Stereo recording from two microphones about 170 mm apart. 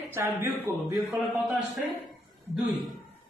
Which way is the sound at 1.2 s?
Centre (ahead or behind).